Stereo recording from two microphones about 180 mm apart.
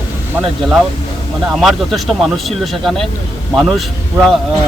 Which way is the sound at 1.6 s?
Centre (ahead or behind).